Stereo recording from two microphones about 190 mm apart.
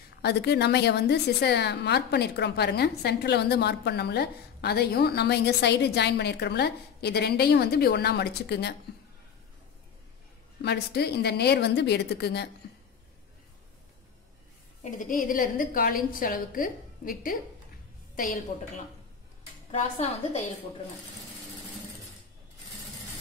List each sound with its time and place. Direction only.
0.2 s a woman's voice: 60° left (ahead or behind)
10.6 s a woman's voice: 60° left (ahead or behind)
14.8 s a woman's voice: 40° left (ahead or behind)